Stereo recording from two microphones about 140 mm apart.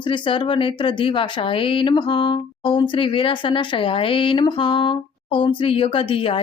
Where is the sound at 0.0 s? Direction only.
35° left (ahead or behind).